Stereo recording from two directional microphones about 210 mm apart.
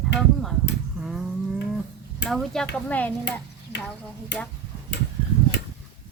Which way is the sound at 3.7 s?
55° left (ahead or behind).